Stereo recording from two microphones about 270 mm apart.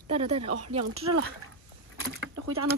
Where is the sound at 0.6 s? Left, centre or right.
Right.